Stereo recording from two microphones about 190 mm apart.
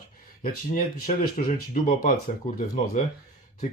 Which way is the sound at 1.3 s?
45° left (ahead or behind).